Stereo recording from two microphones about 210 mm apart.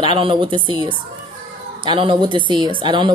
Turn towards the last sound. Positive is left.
turn(degrees=-25)  # may be behind; listen again after turning